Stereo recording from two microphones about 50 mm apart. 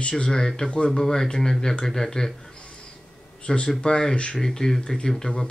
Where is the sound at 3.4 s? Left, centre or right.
Centre.